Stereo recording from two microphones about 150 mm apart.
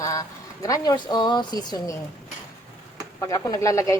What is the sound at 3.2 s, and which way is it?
Speech, 20° left (ahead or behind).